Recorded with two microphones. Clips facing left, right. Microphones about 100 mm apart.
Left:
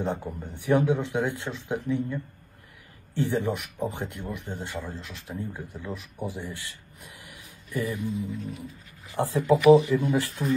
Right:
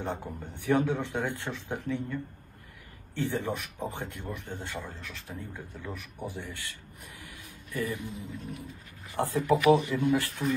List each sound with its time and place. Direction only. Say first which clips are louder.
0.0 s speech: left 5 dB; 15° left (ahead or behind)
3.2 s speech: left 4 dB; 15° left (ahead or behind)